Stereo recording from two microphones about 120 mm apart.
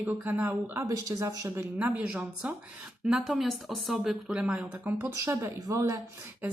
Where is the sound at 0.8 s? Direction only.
25° right (ahead or behind).